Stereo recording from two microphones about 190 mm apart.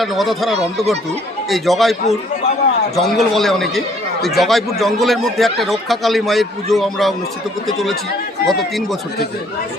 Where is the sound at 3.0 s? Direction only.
Centre (ahead or behind).